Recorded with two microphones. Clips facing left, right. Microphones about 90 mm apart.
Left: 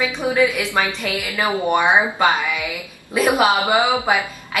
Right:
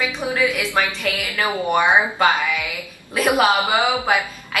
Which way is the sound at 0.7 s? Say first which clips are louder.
Even; 20° left (ahead or behind).